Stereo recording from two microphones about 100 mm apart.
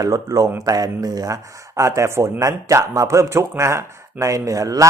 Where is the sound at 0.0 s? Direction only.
35° right (ahead or behind).